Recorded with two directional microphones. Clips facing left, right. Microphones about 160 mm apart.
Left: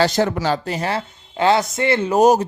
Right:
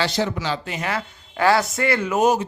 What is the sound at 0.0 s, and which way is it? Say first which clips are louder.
Speech: left 5 dB; 50° left (ahead or behind).